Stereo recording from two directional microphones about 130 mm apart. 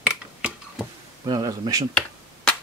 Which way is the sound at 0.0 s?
5° right (ahead or behind).